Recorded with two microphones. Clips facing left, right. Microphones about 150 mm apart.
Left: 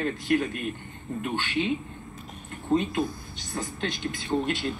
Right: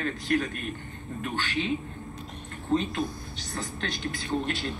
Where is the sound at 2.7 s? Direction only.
15° left (ahead or behind).